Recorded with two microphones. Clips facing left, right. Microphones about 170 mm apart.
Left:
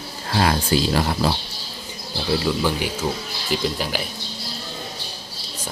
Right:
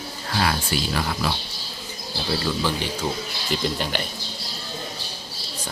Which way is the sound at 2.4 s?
15° left (ahead or behind).